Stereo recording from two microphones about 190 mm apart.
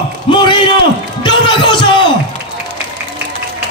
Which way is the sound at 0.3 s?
25° left (ahead or behind).